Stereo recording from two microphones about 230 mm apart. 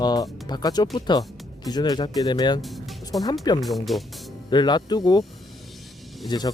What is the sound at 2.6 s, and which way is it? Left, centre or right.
Music, centre.